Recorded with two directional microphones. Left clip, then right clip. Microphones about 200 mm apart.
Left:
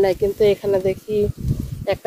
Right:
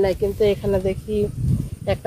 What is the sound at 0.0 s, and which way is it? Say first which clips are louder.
Speech: left 2 dB; 35° left (ahead or behind).